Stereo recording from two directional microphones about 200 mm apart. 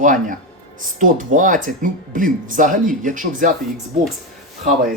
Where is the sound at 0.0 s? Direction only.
40° right (ahead or behind).